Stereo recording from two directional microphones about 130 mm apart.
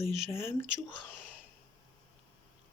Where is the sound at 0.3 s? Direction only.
20° left (ahead or behind).